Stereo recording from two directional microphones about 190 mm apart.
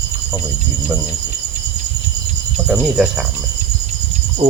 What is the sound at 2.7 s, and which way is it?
Speech, 5° right (ahead or behind).